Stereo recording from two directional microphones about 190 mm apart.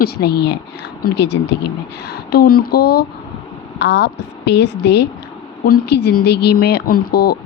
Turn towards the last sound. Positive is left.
turn(degrees=55)  # may be behind; listen again after turning